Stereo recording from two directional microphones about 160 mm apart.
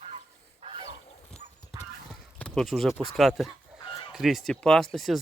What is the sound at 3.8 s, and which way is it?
Chicken, 30° left (ahead or behind).